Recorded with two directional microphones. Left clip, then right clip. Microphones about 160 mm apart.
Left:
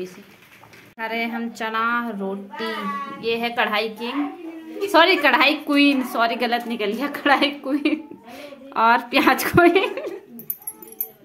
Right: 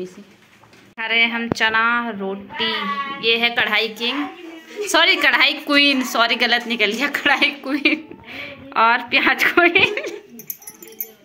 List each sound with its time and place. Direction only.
0.9 s a woman's voice: 5° left (ahead or behind)
8.3 s a sound: 20° left (ahead or behind)
8.7 s a woman's voice: 20° left (ahead or behind)